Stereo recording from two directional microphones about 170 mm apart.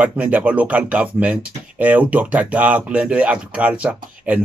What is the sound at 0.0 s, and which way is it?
Speech, 10° right (ahead or behind).